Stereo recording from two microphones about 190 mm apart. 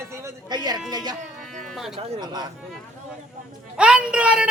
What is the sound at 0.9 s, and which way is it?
Speech, 20° right (ahead or behind).